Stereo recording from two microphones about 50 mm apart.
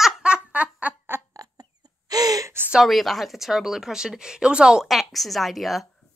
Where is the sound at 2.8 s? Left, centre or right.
Centre.